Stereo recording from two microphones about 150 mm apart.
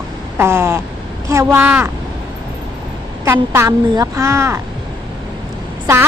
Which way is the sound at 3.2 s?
15° right (ahead or behind).